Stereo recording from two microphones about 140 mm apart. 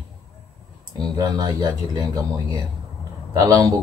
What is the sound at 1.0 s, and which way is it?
A man's voice, 30° right (ahead or behind).